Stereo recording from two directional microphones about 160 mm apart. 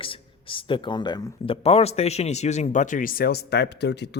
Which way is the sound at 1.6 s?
40° left (ahead or behind).